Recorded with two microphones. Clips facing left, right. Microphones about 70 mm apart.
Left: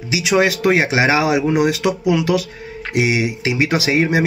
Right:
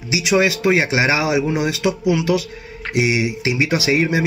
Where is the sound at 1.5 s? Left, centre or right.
Left.